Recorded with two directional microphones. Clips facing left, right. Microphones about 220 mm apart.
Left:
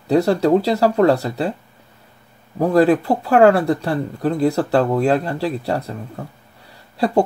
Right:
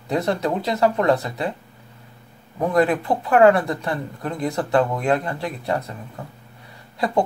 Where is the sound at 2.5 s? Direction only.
30° left (ahead or behind).